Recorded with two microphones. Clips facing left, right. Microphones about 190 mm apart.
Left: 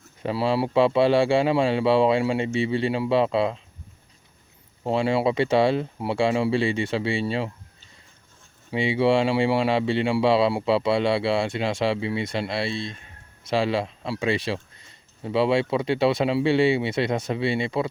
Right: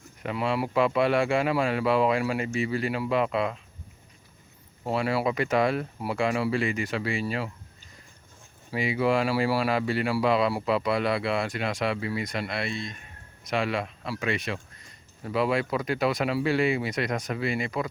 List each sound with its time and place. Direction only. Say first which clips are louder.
0.2 s speech: left 4 dB; 30° left (ahead or behind)
4.8 s speech: left 4 dB; 25° left (ahead or behind)
8.7 s speech: left 4 dB; 25° left (ahead or behind)